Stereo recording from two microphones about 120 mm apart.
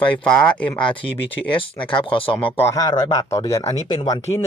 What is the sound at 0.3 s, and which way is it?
Speech, 10° left (ahead or behind).